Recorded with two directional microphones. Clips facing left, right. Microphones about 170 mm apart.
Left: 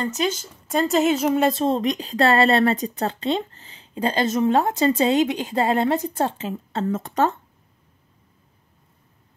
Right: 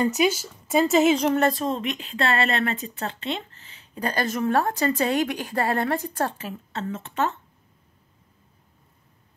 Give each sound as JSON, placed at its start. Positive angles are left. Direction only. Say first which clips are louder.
{"t": 0.0, "sound": "a woman's voice", "louder": "right 3 dB", "side_deg": -10}
{"t": 1.5, "sound": "a woman's voice", "louder": "left 5 dB", "side_deg": 30}